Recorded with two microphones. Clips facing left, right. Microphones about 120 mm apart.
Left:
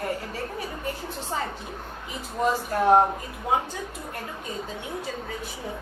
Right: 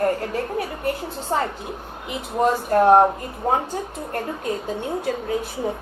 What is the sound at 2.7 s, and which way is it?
A woman's voice, 50° right (ahead or behind).